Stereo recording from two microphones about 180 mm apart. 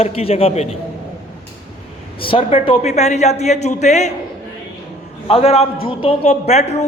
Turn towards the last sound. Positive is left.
turn(degrees=35)  # may be behind; listen again after turning